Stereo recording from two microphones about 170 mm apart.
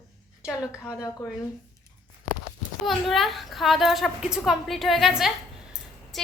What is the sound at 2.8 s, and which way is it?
A woman's voice, centre (ahead or behind).